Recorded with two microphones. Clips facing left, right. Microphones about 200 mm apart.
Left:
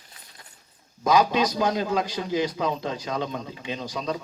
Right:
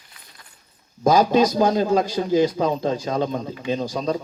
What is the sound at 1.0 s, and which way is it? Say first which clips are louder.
A man's voice: right 5 dB; 45° right (ahead or behind).